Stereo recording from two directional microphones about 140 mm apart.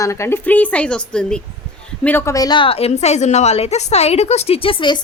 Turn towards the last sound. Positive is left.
turn(degrees=35)  # may be behind; listen again after turning